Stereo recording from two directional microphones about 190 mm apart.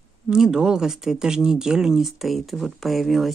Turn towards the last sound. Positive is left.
turn(degrees=0)  # may be behind; listen again after turning